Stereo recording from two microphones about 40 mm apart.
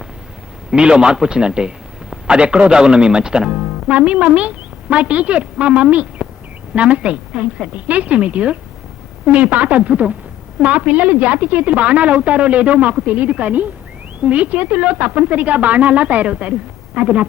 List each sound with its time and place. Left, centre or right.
0.7 s a man's voice: right